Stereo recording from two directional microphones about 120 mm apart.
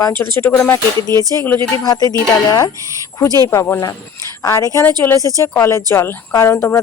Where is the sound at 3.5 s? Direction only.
25° left (ahead or behind).